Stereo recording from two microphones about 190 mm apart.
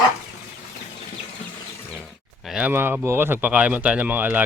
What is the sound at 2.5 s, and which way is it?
Speech, 10° right (ahead or behind).